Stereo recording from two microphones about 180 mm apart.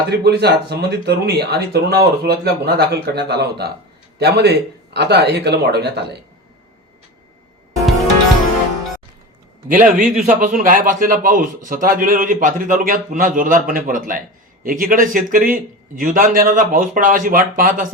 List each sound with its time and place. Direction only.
0.1 s speech: 65° right (ahead or behind)
9.6 s a man's voice: 45° right (ahead or behind)